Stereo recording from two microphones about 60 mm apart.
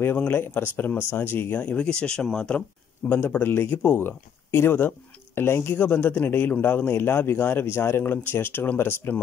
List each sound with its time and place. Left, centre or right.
0.0 s speech: left; by 2.6 s centre
3.1 s speech: left